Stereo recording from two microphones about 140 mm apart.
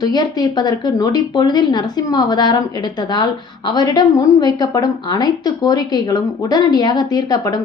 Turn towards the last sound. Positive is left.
turn(degrees=30)  # may be behind; listen again after turning